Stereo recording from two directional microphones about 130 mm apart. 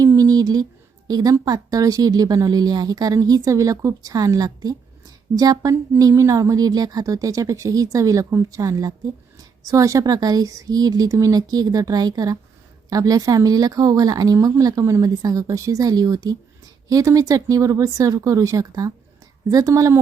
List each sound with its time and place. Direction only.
0.0 s a woman's voice: 25° right (ahead or behind)